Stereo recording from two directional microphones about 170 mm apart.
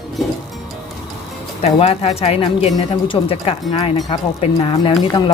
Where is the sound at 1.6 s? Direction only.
35° left (ahead or behind).